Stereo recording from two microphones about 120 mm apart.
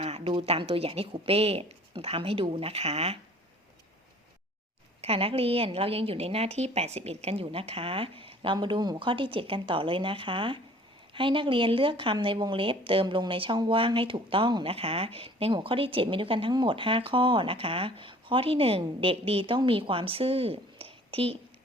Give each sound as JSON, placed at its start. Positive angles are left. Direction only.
{"t": 0.0, "sound": "speech", "side_deg": -50}
{"t": 4.9, "sound": "speech", "side_deg": -55}
{"t": 8.5, "sound": "speech", "side_deg": -35}